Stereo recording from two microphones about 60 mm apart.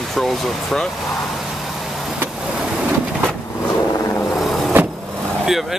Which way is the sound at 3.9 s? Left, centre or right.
Left.